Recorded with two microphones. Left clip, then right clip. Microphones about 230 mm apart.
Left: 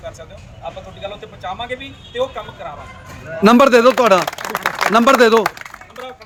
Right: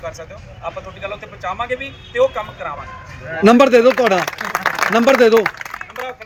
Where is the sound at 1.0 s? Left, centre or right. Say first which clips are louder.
Even; centre.